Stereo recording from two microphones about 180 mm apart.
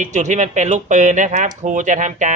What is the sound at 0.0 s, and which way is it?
Speech, 40° right (ahead or behind).